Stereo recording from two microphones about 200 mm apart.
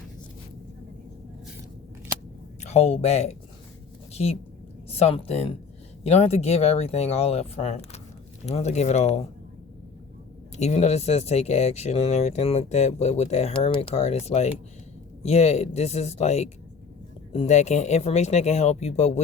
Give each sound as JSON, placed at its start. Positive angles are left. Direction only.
{"t": 2.6, "sound": "a woman's voice", "side_deg": 35}
{"t": 10.6, "sound": "speech", "side_deg": 35}